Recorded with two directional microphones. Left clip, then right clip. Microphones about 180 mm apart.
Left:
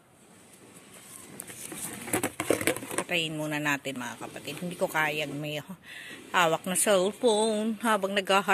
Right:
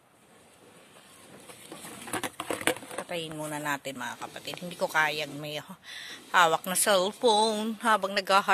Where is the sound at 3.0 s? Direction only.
10° right (ahead or behind).